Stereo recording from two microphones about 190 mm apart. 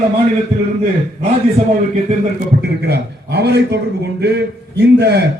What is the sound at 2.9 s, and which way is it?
A man's voice, 60° right (ahead or behind).